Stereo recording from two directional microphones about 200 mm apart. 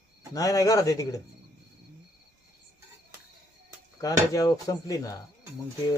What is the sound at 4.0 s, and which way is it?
Speech, 15° left (ahead or behind).